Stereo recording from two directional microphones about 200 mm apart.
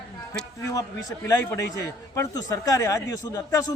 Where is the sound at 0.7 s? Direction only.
15° left (ahead or behind).